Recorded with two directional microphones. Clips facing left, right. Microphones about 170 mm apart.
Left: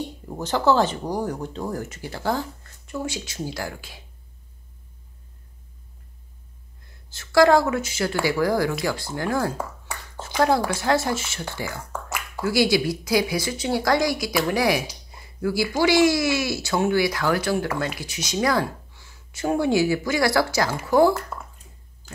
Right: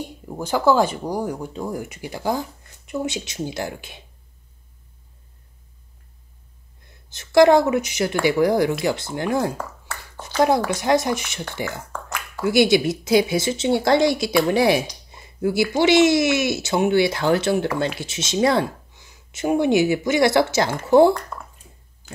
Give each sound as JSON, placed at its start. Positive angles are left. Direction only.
{"t": 0.0, "sound": "speech", "side_deg": -10}
{"t": 7.1, "sound": "speech", "side_deg": -20}
{"t": 9.9, "sound": "a sound", "side_deg": 15}
{"t": 10.7, "sound": "speech", "side_deg": -20}
{"t": 12.4, "sound": "speech", "side_deg": -20}
{"t": 21.3, "sound": "bathtub", "side_deg": 5}